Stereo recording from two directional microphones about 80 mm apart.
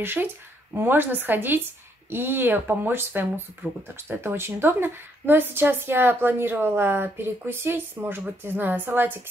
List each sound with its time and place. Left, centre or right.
0.0 s a woman's voice: right